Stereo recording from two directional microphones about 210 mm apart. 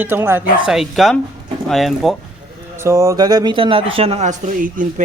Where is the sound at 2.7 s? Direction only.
15° right (ahead or behind).